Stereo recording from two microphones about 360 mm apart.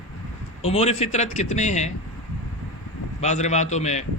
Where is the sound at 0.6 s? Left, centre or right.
Centre.